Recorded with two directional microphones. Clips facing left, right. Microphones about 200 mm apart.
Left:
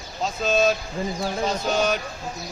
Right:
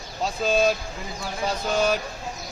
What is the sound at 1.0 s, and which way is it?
Speech, 30° left (ahead or behind).